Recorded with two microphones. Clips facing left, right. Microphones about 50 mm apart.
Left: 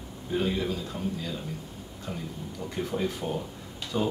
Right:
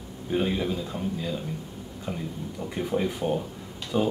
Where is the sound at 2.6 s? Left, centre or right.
Centre.